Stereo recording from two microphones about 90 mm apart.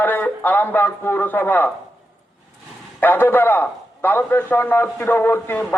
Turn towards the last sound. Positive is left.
turn(degrees=25)  # may be behind; listen again after turning